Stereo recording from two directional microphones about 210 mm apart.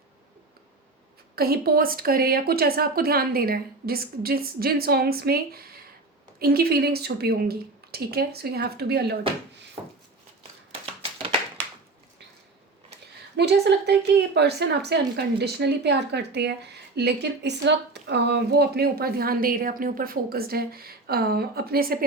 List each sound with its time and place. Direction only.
1.4 s a woman's voice: 45° right (ahead or behind)
13.3 s a woman's voice: 50° right (ahead or behind)